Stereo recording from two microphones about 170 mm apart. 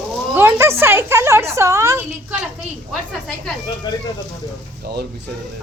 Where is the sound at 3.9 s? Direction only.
25° left (ahead or behind).